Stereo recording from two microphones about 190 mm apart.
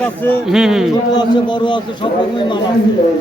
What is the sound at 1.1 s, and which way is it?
Speech, 25° left (ahead or behind).